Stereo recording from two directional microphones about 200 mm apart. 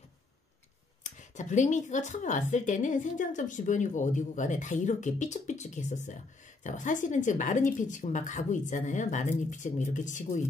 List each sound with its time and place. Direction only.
1.0 s speech: 40° left (ahead or behind)